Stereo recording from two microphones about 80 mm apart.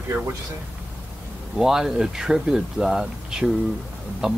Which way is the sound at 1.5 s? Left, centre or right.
Centre.